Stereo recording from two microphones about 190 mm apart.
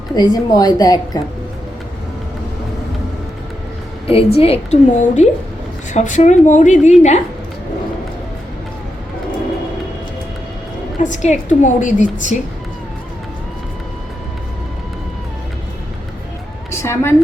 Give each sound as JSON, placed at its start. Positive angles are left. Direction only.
{"t": 0.2, "sound": "a woman's voice", "side_deg": 20}
{"t": 4.0, "sound": "a woman's voice", "side_deg": 30}
{"t": 11.0, "sound": "a woman's voice", "side_deg": 40}
{"t": 16.7, "sound": "a woman's voice", "side_deg": 15}